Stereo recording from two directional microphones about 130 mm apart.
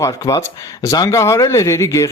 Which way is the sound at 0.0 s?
25° left (ahead or behind).